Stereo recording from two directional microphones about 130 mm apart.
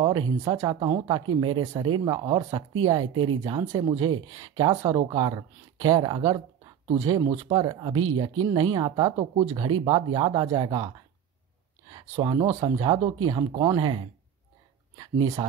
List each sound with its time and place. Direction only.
0.0 s speech: 35° right (ahead or behind)
11.9 s speech: 30° right (ahead or behind)